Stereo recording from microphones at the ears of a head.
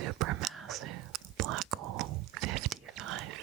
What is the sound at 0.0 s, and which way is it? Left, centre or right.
Whispering, right.